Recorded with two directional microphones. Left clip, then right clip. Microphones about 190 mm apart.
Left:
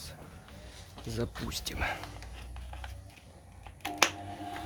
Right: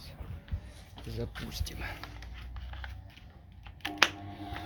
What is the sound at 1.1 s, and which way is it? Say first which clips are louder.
Speech: left 4 dB; 35° left (ahead or behind).